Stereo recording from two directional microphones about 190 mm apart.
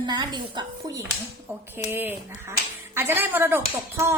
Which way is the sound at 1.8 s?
10° right (ahead or behind).